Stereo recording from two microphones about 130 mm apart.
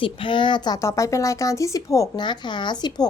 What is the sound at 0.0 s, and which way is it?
Speech, 40° left (ahead or behind).